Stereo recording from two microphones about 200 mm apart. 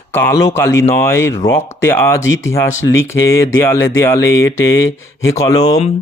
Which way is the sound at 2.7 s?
75° left (ahead or behind).